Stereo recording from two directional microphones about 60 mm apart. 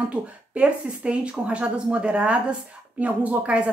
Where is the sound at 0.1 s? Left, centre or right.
Centre.